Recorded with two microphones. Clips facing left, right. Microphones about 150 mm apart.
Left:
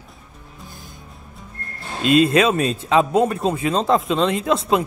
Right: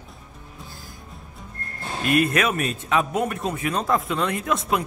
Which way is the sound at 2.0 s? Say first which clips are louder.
Left 6 dB; 25° left (ahead or behind).